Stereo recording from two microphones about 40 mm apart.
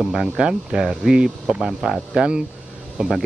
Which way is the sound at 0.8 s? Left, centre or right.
Centre.